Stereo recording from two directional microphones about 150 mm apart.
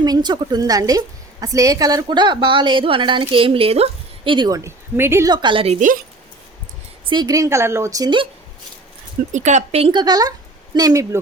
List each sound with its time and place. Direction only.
0.0 s a woman's voice: 30° right (ahead or behind)
5.3 s a woman's voice: 30° right (ahead or behind)
7.0 s a woman's voice: 30° right (ahead or behind)
9.3 s a woman's voice: 50° right (ahead or behind); by 11.2 s 25° right (ahead or behind)